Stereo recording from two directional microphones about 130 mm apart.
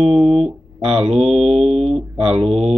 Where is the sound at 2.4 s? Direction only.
50° right (ahead or behind).